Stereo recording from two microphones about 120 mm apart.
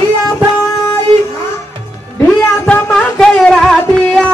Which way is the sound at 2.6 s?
10° left (ahead or behind).